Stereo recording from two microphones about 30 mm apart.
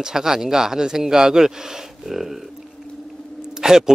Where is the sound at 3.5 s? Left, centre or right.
Right.